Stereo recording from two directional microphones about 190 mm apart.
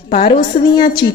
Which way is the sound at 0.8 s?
25° left (ahead or behind).